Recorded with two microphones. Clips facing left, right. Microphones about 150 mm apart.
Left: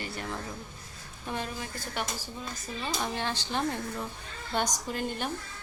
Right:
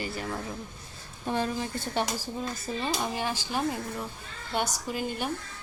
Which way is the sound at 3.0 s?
10° right (ahead or behind).